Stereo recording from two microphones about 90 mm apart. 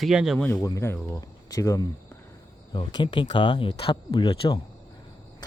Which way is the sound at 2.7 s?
55° left (ahead or behind).